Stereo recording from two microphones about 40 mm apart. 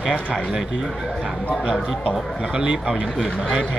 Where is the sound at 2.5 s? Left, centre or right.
Centre.